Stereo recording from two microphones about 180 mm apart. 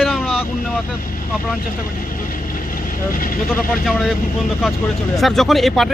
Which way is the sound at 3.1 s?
50° left (ahead or behind).